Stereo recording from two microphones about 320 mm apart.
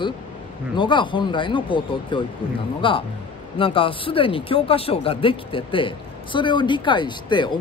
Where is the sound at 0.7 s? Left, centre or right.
Centre.